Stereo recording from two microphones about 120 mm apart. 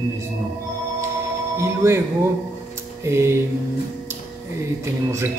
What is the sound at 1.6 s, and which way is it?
Speech, 20° right (ahead or behind).